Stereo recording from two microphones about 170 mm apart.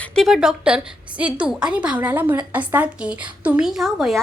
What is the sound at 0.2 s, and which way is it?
A woman's voice, centre (ahead or behind).